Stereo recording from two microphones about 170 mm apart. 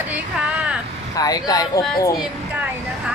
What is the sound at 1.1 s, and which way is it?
Speech, 20° left (ahead or behind).